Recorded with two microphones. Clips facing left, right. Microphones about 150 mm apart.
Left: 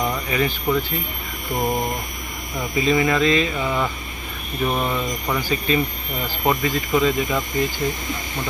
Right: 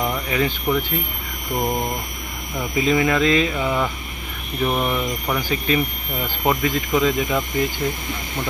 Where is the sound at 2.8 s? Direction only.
Centre (ahead or behind).